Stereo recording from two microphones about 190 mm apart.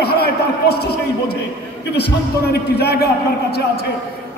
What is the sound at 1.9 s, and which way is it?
A man's voice, 60° left (ahead or behind).